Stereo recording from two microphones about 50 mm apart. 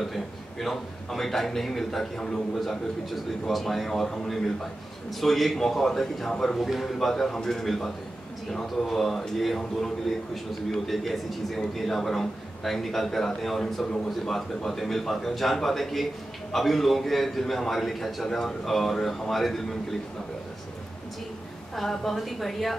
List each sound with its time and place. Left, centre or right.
0.0 s a man's voice: centre
21.7 s a man's voice: centre